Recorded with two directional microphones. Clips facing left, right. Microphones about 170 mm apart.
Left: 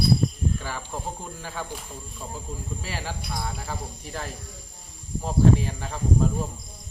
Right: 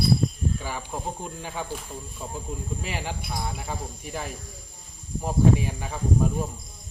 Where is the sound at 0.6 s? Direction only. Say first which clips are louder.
Right 1 dB; 10° right (ahead or behind).